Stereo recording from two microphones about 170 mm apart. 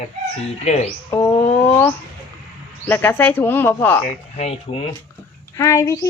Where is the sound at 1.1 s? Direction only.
15° left (ahead or behind).